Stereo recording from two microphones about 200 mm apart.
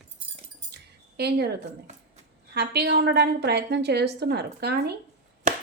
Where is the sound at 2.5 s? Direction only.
55° right (ahead or behind).